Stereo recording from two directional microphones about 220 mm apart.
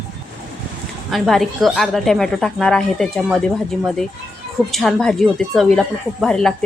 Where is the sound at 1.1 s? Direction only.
Centre (ahead or behind).